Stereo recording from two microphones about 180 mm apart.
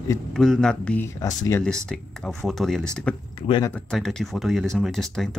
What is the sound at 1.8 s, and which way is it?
Speech, 5° left (ahead or behind).